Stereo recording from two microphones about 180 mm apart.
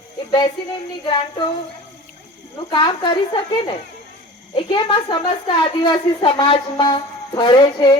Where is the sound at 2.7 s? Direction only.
25° left (ahead or behind).